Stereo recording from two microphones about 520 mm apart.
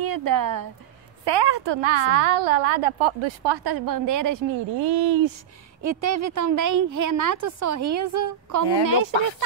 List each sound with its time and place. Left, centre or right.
0.0 s speech: right
1.2 s a woman's voice: right
5.8 s a woman's voice: right